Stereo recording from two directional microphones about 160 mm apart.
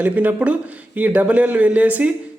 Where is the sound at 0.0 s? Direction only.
10° right (ahead or behind).